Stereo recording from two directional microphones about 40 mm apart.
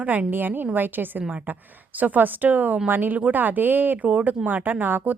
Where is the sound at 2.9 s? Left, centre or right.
Right.